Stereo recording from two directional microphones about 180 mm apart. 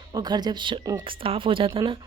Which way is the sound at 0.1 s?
20° right (ahead or behind).